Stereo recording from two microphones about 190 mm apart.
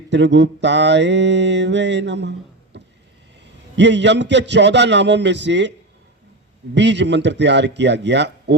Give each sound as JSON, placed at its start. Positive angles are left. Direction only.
{"t": 0.1, "sound": "mantra", "side_deg": -70}
{"t": 3.8, "sound": "mantra", "side_deg": -70}
{"t": 6.7, "sound": "mantra", "side_deg": -65}